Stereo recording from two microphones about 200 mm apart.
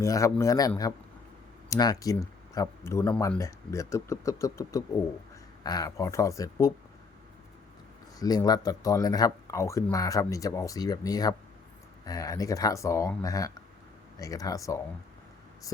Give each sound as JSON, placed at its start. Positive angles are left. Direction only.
{"t": 0.0, "sound": "speech", "side_deg": 15}
{"t": 1.7, "sound": "speech", "side_deg": 20}
{"t": 8.2, "sound": "speech", "side_deg": 20}